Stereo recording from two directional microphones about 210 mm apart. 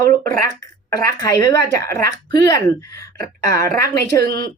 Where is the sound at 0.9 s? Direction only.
15° left (ahead or behind).